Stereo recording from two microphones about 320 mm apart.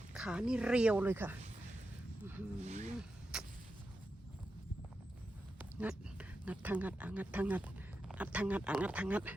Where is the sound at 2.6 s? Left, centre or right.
Right.